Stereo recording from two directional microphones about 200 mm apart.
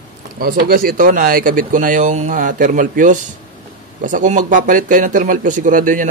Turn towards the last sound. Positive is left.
turn(degrees=-40)  # may be behind; listen again after turning